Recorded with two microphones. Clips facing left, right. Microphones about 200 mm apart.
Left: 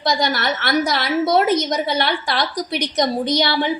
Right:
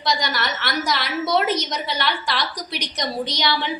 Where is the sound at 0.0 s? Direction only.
50° left (ahead or behind).